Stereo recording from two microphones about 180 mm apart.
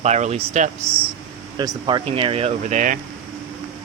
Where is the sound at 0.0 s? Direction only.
40° right (ahead or behind).